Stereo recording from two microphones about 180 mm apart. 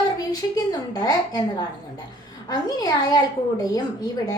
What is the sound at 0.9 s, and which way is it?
Speech, 20° left (ahead or behind).